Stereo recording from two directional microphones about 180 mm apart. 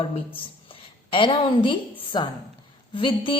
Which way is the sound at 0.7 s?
30° left (ahead or behind).